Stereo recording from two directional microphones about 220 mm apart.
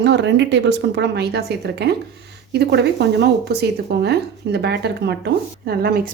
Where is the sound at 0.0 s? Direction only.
50° right (ahead or behind).